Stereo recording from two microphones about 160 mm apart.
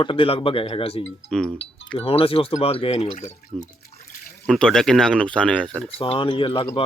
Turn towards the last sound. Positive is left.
turn(degrees=35)  # may be behind; listen again after turning